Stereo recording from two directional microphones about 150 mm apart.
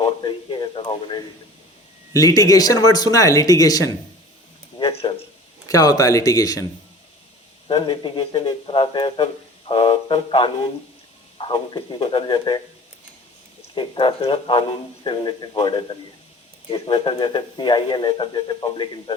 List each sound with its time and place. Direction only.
0.0 s speech: 30° left (ahead or behind)
4.8 s speech: 40° left (ahead or behind)
5.6 s speech: 25° left (ahead or behind)
7.7 s speech: 35° left (ahead or behind)
13.7 s speech: 35° left (ahead or behind)